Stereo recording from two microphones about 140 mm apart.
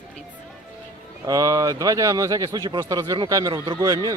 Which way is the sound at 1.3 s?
25° right (ahead or behind).